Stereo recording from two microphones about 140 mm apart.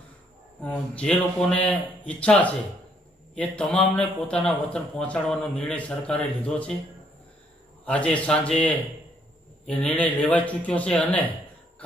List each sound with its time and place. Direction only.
0.6 s speech: 10° left (ahead or behind)
7.8 s speech: 10° left (ahead or behind)
9.7 s speech: 10° left (ahead or behind)